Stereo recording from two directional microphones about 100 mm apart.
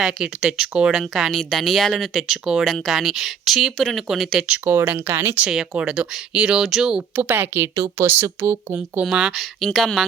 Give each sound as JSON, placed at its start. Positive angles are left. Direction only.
{"t": 0.0, "sound": "speech", "side_deg": -5}
{"t": 4.4, "sound": "speech", "side_deg": -20}
{"t": 5.4, "sound": "speech", "side_deg": -10}
{"t": 7.2, "sound": "speech", "side_deg": -20}
{"t": 8.7, "sound": "speech", "side_deg": -10}